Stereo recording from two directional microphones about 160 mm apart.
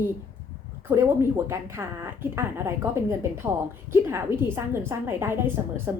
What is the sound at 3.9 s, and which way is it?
A woman's voice, 15° right (ahead or behind).